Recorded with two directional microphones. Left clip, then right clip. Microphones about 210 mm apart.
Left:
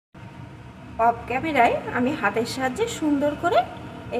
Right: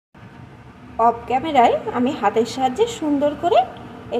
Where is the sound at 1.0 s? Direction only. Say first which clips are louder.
Right 4 dB; 20° right (ahead or behind).